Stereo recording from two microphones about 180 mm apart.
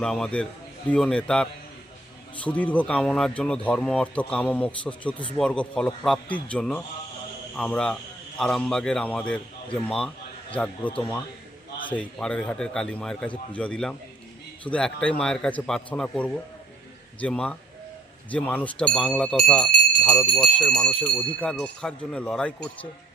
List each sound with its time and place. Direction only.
0.0 s a man's voice: 5° left (ahead or behind)
10.5 s speech: 10° left (ahead or behind)